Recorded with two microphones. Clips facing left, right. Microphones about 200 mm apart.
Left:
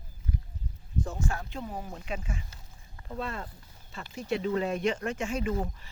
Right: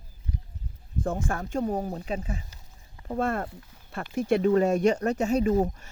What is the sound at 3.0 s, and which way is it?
Speech, 50° right (ahead or behind).